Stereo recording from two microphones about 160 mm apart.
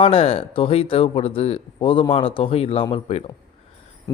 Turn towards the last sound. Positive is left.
turn(degrees=40)  # may be behind; listen again after turning